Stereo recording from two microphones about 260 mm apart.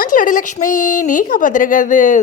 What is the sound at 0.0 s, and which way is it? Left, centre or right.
A woman's voice, left.